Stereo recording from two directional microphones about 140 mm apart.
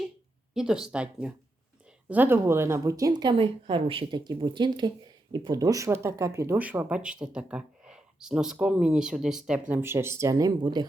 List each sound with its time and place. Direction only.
0.5 s a woman's voice: 5° right (ahead or behind); by 10.8 s 30° right (ahead or behind)